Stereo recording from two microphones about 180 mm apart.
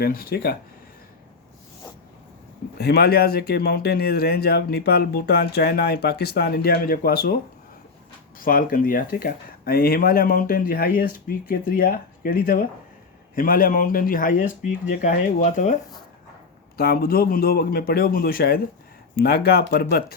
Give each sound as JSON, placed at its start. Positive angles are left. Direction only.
{"t": 0.0, "sound": "speech", "side_deg": 55}
{"t": 2.7, "sound": "speech", "side_deg": 60}
{"t": 8.4, "sound": "speech", "side_deg": 50}
{"t": 16.7, "sound": "speech", "side_deg": 60}